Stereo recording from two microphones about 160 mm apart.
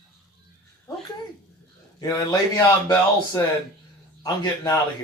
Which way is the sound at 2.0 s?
20° left (ahead or behind).